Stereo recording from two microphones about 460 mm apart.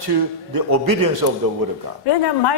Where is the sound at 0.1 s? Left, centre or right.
Right.